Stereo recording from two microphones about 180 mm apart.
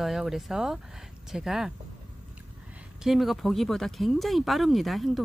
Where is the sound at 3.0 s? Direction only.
Centre (ahead or behind).